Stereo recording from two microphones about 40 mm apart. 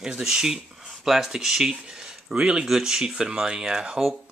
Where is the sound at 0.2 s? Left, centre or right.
Centre.